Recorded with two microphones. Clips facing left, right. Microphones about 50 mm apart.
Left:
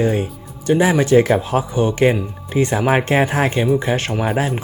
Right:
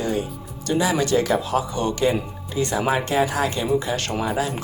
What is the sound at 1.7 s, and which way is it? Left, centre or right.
Speech, centre.